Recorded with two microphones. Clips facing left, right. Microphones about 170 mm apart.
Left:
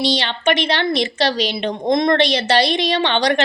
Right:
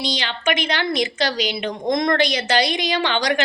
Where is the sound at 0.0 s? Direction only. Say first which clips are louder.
Left 5 dB; 30° left (ahead or behind).